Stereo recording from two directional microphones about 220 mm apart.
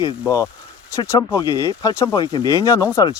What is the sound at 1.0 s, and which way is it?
Speech, 15° left (ahead or behind).